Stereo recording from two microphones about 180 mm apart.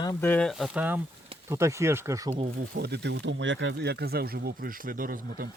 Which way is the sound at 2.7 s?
65° right (ahead or behind).